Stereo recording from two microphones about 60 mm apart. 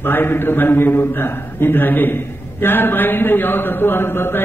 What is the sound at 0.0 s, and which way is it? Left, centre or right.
A man's voice, left.